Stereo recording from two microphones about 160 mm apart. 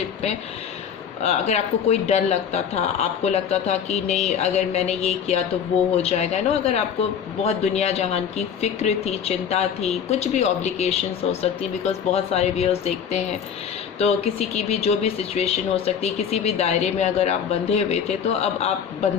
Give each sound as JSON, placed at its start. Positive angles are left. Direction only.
{"t": 1.2, "sound": "speech", "side_deg": 40}